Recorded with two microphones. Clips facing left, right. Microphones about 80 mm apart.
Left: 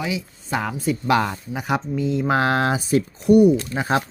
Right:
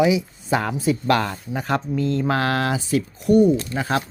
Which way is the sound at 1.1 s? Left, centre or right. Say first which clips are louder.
Even; centre.